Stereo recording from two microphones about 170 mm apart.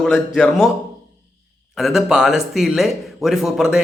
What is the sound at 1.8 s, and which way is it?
A man's voice, centre (ahead or behind).